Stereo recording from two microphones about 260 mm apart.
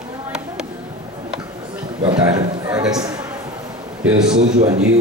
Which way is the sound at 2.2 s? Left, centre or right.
Centre.